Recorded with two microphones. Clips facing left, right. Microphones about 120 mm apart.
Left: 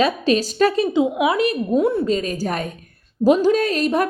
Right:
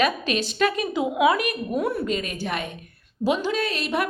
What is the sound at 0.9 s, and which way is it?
A woman's voice, 25° left (ahead or behind).